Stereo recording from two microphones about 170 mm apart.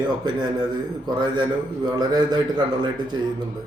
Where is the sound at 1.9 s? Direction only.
25° right (ahead or behind).